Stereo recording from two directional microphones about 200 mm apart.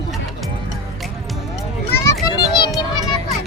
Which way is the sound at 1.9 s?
15° left (ahead or behind).